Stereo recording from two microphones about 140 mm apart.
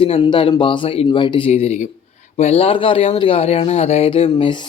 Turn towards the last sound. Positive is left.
turn(degrees=35)  # may be behind; listen again after turning